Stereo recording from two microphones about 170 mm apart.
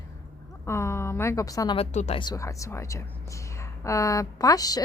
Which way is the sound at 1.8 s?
40° left (ahead or behind).